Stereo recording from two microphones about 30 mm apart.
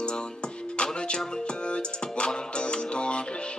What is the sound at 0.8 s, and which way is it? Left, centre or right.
Music, left.